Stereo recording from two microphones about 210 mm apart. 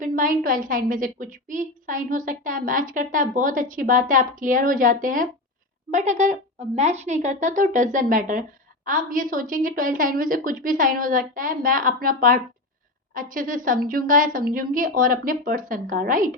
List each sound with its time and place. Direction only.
0.0 s speech: 40° right (ahead or behind)